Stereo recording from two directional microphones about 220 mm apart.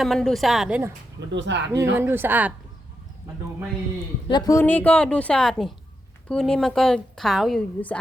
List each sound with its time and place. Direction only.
0.0 s a woman's voice: centre (ahead or behind)
1.3 s speech: 55° right (ahead or behind)
1.7 s speech: 10° right (ahead or behind)
4.3 s a woman's voice: 15° left (ahead or behind)